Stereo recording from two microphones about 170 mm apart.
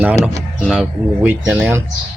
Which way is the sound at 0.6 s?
Centre (ahead or behind).